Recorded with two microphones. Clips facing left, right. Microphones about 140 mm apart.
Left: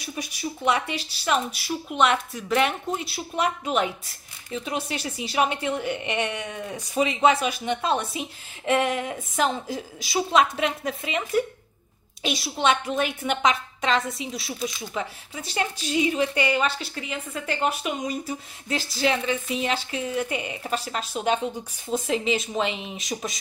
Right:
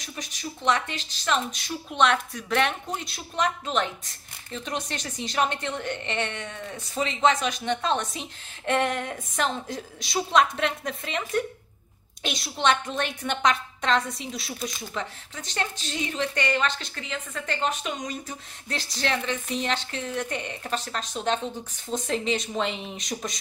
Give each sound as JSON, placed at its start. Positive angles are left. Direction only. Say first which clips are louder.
{"t": 0.0, "sound": "a woman's voice", "louder": "left 5 dB", "side_deg": 10}